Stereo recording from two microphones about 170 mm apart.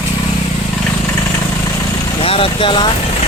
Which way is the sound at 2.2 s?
35° left (ahead or behind).